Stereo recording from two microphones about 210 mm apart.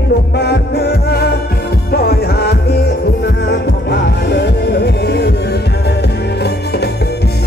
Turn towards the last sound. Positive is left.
turn(degrees=50)  # may be behind; listen again after turning